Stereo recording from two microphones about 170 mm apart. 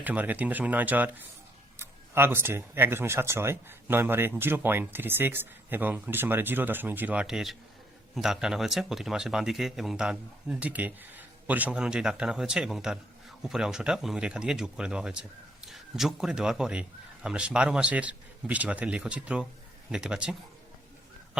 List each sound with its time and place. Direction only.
0.0 s speech: 10° right (ahead or behind)